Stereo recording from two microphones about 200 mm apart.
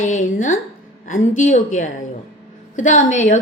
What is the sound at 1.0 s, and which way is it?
A woman's voice, 40° left (ahead or behind).